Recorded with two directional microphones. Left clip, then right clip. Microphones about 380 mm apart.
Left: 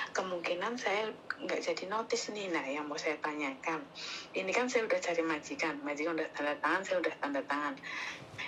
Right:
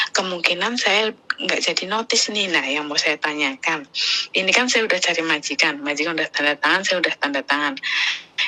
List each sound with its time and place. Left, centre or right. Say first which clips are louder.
0.0 s a woman's voice: right 15 dB; right